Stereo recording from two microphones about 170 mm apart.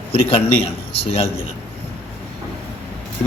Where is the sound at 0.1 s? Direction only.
35° left (ahead or behind).